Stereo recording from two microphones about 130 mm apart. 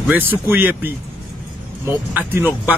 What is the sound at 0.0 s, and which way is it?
Speech, 15° right (ahead or behind).